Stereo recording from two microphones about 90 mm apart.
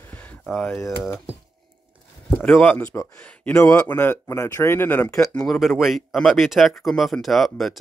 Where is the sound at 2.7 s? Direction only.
35° left (ahead or behind).